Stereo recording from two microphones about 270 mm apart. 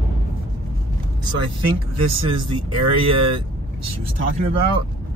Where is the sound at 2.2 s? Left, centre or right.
Centre.